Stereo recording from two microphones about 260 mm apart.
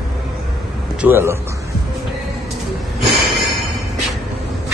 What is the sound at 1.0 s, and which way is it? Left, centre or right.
Speech, centre.